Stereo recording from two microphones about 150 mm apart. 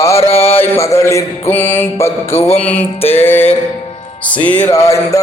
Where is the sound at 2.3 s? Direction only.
40° left (ahead or behind).